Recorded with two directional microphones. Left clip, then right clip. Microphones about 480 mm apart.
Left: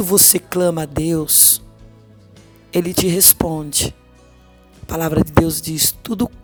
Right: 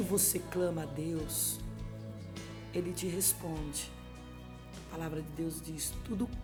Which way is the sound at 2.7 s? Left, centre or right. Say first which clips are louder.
Left 19 dB; centre.